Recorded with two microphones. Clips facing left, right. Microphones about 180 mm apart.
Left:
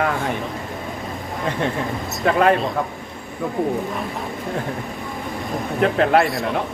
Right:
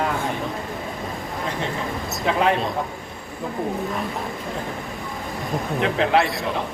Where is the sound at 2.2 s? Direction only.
55° left (ahead or behind).